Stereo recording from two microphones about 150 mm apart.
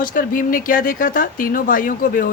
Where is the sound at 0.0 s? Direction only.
65° left (ahead or behind).